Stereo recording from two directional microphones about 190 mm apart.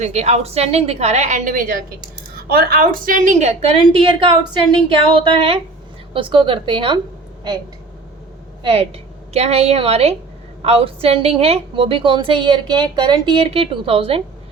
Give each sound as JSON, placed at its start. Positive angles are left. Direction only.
{"t": 0.0, "sound": "a woman's voice", "side_deg": -35}
{"t": 8.6, "sound": "a woman's voice", "side_deg": -30}